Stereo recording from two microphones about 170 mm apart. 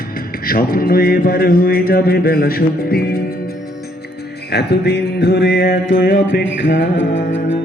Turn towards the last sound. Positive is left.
turn(degrees=90)